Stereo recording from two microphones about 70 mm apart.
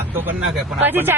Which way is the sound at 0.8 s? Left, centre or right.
Right.